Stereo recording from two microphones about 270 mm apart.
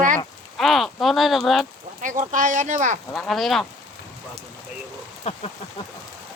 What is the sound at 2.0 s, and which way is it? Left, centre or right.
Speech, right.